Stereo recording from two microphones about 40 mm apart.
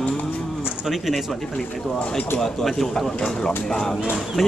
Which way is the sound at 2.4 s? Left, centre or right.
Centre.